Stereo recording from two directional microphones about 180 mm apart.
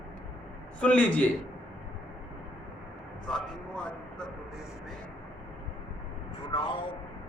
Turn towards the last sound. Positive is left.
turn(degrees=25)  # may be behind; listen again after turning